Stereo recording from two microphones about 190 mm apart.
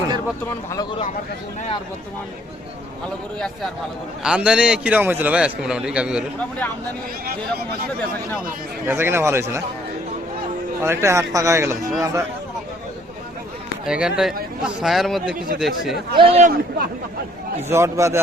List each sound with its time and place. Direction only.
3.3 s a man's voice: 5° left (ahead or behind)
8.9 s a man's voice: 10° right (ahead or behind)
10.8 s a man's voice: 15° right (ahead or behind)
13.8 s a man's voice: 5° right (ahead or behind)
16.1 s a man's voice: 30° right (ahead or behind)
16.4 s a man's voice: 50° right (ahead or behind)
17.7 s a man's voice: 15° right (ahead or behind)